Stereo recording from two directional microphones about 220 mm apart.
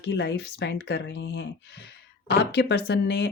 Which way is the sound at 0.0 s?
50° left (ahead or behind).